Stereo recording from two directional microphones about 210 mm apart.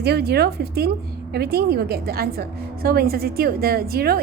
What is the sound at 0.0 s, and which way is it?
A woman's voice, 50° right (ahead or behind).